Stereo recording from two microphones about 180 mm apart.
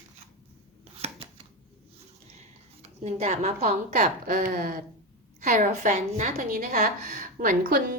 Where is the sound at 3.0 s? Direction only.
40° right (ahead or behind).